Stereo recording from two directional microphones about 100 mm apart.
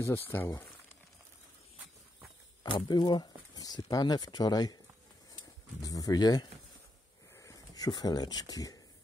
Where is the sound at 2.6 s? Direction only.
45° left (ahead or behind).